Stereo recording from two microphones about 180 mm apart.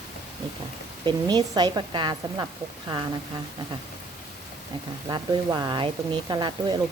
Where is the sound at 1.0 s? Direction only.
25° right (ahead or behind).